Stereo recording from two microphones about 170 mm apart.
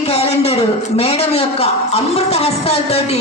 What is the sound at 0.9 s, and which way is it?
A woman's voice, 35° left (ahead or behind).